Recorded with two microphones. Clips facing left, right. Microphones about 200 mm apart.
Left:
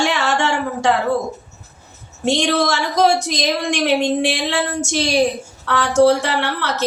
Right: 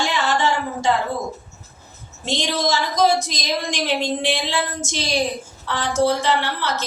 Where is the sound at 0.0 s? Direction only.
70° left (ahead or behind).